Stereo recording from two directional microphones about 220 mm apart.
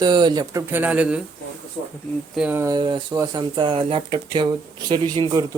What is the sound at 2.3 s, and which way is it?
Speech, 5° right (ahead or behind).